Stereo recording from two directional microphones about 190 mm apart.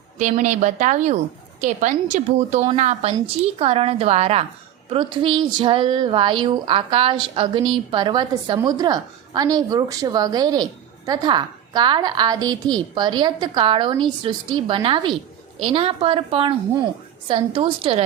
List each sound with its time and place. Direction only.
0.2 s a woman's voice: 40° right (ahead or behind)